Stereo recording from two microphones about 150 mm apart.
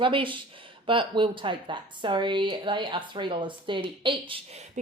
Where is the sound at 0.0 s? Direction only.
35° right (ahead or behind).